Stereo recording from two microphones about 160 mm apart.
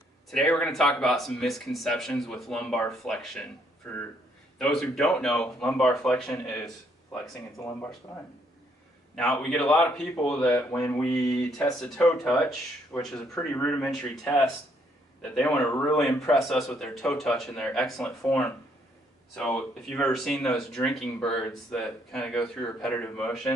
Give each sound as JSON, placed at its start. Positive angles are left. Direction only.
{"t": 0.3, "sound": "speech", "side_deg": 5}
{"t": 4.6, "sound": "speech", "side_deg": 5}
{"t": 7.5, "sound": "speech", "side_deg": 20}
{"t": 9.1, "sound": "speech", "side_deg": 5}